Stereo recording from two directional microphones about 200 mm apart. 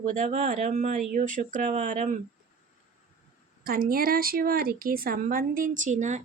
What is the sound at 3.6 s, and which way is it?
A woman's voice, 45° right (ahead or behind).